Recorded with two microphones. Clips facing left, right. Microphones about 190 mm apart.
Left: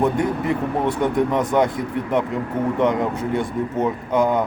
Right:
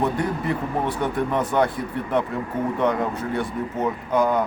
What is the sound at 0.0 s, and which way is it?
Speech, 20° left (ahead or behind).